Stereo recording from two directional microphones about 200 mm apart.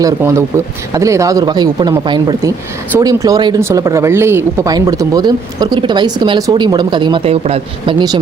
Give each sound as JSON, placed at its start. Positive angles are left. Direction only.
{"t": 0.0, "sound": "speech", "side_deg": -15}